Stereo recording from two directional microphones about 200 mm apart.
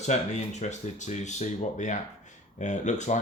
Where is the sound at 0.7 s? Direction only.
35° left (ahead or behind).